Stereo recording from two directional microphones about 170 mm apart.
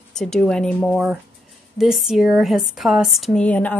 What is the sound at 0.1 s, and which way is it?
Speech, 5° left (ahead or behind).